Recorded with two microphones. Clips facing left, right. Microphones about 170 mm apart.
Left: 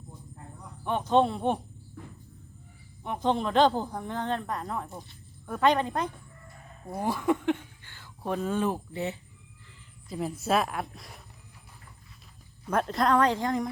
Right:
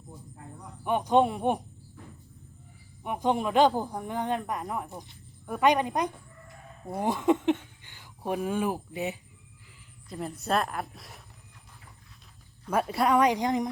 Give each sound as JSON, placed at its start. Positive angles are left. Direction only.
{"t": 0.9, "sound": "speech", "side_deg": -10}
{"t": 3.0, "sound": "speech", "side_deg": -10}
{"t": 10.1, "sound": "a woman's voice", "side_deg": 0}
{"t": 12.7, "sound": "speech", "side_deg": -10}